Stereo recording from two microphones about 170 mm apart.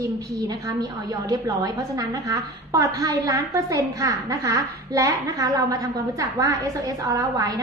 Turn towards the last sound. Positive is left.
turn(degrees=-25)  # may be behind; listen again after turning